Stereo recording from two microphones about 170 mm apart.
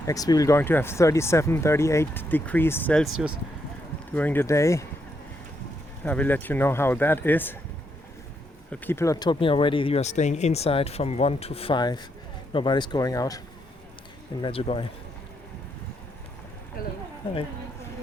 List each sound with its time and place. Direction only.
0.0 s speech: 20° left (ahead or behind)
4.1 s speech: 10° left (ahead or behind)
6.0 s speech: 10° left (ahead or behind)
8.7 s speech: 10° left (ahead or behind)
14.4 s speech: 35° left (ahead or behind)
16.8 s speech: 60° left (ahead or behind)